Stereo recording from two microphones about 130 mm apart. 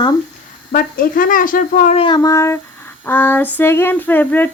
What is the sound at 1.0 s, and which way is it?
Speech, 90° left.